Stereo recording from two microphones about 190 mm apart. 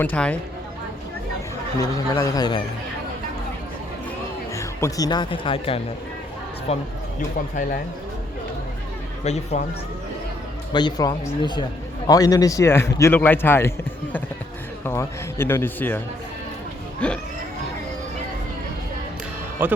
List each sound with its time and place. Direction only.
0.0 s a man's voice: 10° left (ahead or behind)
1.8 s speech: 20° left (ahead or behind)
4.5 s speech: 15° left (ahead or behind); by 7.8 s 40° left (ahead or behind)
9.2 s speech: 35° left (ahead or behind)
10.7 s a man's voice: 25° left (ahead or behind)
17.0 s a man's voice: 5° left (ahead or behind)